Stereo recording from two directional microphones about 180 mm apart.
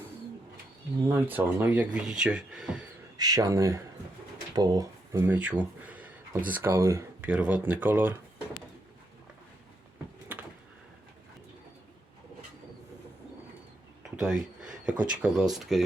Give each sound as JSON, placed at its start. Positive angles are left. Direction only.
{"t": 1.0, "sound": "speech", "side_deg": -10}
{"t": 3.2, "sound": "speech", "side_deg": -20}
{"t": 14.8, "sound": "speech", "side_deg": -5}